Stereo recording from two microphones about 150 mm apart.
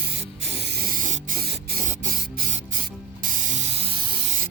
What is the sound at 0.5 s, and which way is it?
Spray, 90° right.